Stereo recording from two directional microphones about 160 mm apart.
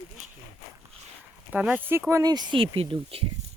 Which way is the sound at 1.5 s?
10° right (ahead or behind).